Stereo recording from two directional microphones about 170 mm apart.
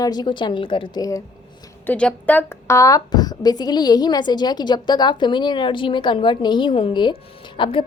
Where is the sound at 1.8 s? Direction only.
10° left (ahead or behind); by 7.7 s 30° left (ahead or behind).